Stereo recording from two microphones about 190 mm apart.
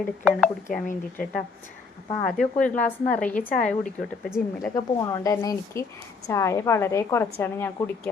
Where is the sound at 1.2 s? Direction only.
45° left (ahead or behind).